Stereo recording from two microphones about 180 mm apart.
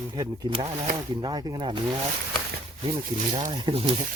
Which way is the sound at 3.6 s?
30° right (ahead or behind).